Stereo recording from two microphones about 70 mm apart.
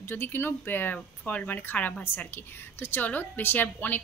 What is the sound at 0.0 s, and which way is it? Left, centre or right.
A woman's voice, left.